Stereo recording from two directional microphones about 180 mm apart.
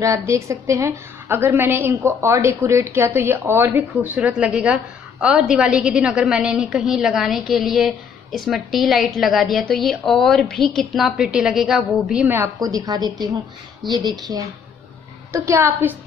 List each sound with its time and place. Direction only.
0.0 s a woman's voice: 15° right (ahead or behind)
15.3 s a woman's voice: 15° right (ahead or behind)